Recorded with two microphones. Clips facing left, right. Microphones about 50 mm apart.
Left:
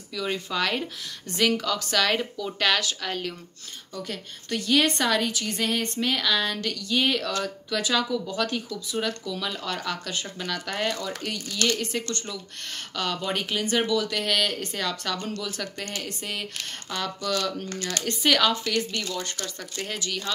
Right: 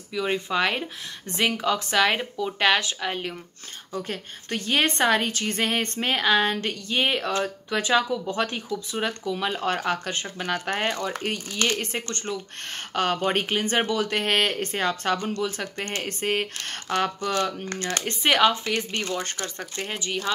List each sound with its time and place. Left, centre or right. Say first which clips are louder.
0.1 s a woman's voice: right 4 dB; right
17.2 s a woman's voice: right 2 dB; right